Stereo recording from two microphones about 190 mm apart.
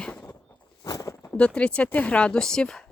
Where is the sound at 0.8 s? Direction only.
20° left (ahead or behind); by 2.8 s 5° left (ahead or behind).